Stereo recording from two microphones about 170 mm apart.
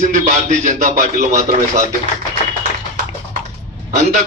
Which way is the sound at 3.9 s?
45° right (ahead or behind).